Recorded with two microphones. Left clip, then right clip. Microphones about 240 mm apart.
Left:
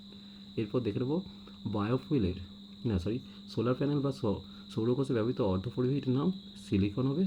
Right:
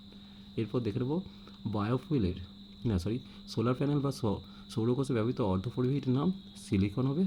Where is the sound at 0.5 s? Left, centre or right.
Centre.